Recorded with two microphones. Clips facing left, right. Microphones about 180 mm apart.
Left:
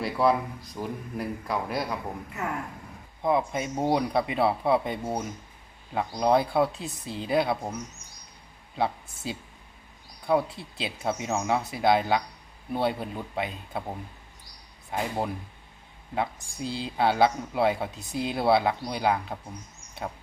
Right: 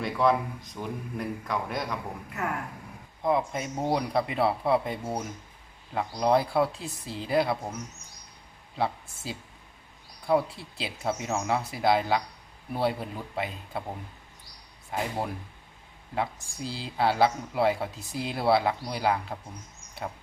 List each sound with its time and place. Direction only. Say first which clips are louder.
0.0 s speech: left 1 dB; 5° left (ahead or behind)
8.8 s speech: left 2 dB; centre (ahead or behind)